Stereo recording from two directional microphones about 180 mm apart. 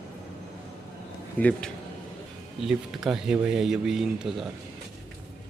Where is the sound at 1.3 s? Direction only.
10° left (ahead or behind).